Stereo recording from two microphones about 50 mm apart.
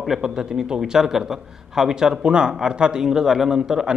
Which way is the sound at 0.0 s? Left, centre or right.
Centre.